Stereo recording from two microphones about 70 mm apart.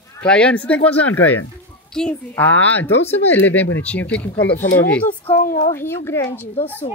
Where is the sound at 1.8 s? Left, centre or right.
Centre.